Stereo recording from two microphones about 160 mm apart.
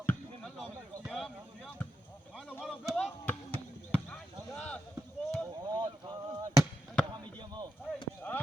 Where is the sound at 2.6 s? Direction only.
5° right (ahead or behind).